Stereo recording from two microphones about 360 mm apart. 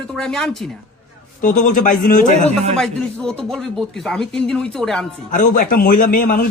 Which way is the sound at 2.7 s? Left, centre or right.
Centre.